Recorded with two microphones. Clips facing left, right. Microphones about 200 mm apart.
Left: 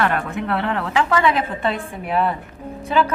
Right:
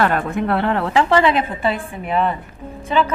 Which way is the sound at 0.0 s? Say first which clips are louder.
Right 3 dB; 35° right (ahead or behind).